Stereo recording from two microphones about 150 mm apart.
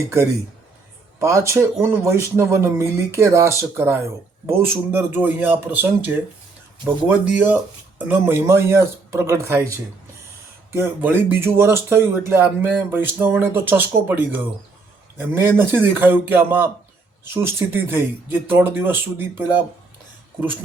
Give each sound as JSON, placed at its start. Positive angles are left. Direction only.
{"t": 1.2, "sound": "speech", "side_deg": -20}